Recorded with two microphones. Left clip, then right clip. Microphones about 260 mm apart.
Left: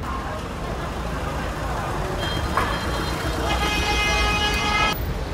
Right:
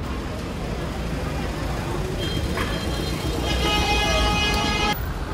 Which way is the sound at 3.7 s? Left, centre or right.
Centre.